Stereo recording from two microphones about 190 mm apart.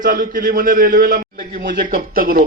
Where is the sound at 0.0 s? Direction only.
45° right (ahead or behind).